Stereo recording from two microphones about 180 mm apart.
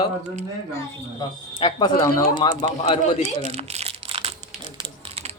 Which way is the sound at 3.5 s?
35° right (ahead or behind).